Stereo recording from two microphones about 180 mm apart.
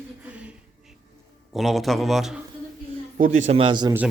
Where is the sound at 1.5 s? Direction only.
Centre (ahead or behind).